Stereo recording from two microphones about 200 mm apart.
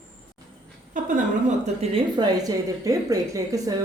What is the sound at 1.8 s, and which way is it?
Speech, 25° right (ahead or behind).